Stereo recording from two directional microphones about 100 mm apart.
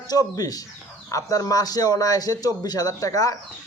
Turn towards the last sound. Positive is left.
turn(degrees=35)  # may be behind; listen again after turning